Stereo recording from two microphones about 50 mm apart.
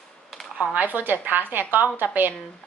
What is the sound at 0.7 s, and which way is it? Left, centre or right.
A woman's voice, right.